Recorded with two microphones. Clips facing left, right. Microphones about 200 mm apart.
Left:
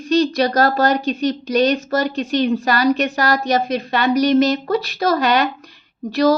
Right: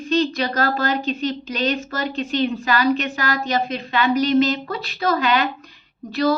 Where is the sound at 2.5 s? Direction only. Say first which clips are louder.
Left 3 dB; 40° left (ahead or behind).